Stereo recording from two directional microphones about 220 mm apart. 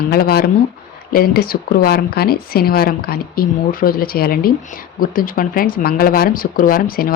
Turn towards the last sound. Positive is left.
turn(degrees=40)  # may be behind; listen again after turning